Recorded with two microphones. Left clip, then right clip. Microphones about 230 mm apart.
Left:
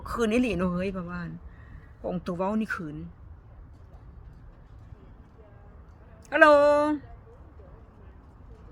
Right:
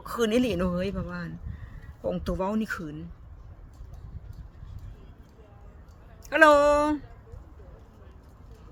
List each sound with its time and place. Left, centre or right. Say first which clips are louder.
0.0 s speech: right 1 dB; centre
6.2 s speech: even; centre